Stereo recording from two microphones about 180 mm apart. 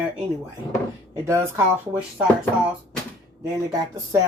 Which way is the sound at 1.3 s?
10° right (ahead or behind).